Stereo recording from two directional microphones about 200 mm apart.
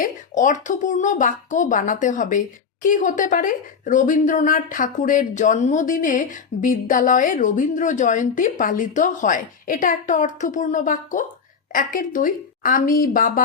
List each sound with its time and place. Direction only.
0.0 s a woman's voice: 40° left (ahead or behind)